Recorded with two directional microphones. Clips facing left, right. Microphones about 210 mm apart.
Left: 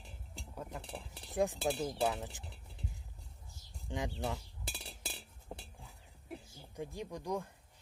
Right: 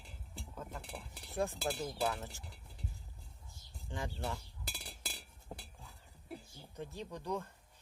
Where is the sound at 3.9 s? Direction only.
15° left (ahead or behind).